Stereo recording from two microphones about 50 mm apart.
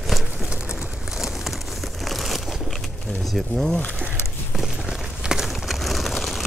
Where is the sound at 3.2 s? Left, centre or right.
Centre.